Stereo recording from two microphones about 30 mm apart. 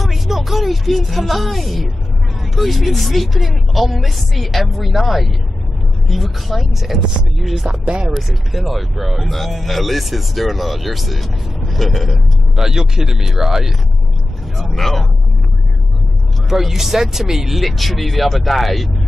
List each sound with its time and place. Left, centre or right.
0.0 s speech: centre
7.8 s speech: right
8.1 s speech: centre
12.5 s speech: centre
14.8 s speech: centre
16.4 s speech: centre
17.6 s speech: centre